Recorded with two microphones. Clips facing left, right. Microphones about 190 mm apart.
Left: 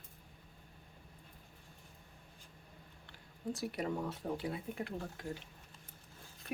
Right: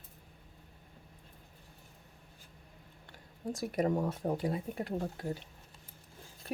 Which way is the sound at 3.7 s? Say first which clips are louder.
Right 7 dB; 45° right (ahead or behind).